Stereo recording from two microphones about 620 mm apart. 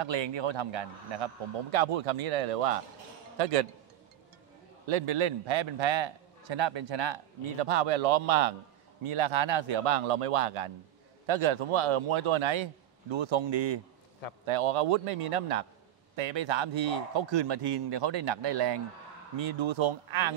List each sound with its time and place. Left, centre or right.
0.0 s a man's voice: right
4.8 s a man's voice: right
7.6 s a man's voice: right
9.0 s a man's voice: right
16.2 s a man's voice: right
19.3 s a man's voice: right